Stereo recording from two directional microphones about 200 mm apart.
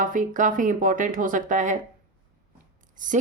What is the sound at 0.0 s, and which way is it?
Speech, 40° right (ahead or behind).